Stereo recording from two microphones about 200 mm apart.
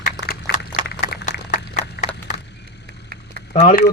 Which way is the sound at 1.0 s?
40° left (ahead or behind).